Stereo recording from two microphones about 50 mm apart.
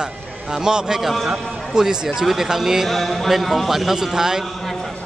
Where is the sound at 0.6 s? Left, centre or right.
Centre.